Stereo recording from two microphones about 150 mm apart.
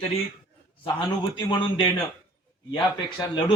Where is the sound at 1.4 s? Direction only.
30° left (ahead or behind).